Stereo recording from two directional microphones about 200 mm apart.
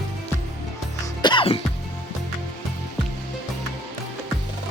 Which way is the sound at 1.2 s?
25° left (ahead or behind).